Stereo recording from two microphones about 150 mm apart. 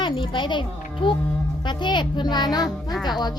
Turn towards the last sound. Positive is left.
turn(degrees=30)  # may be behind; listen again after turning